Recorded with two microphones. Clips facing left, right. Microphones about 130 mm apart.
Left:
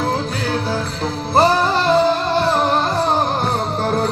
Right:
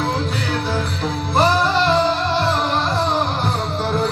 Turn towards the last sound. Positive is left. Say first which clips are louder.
# left 3 dB
turn(degrees=45)  # may be behind; listen again after turning